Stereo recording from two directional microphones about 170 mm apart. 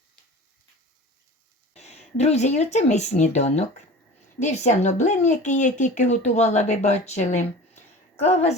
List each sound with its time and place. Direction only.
1.7 s speech: 40° left (ahead or behind)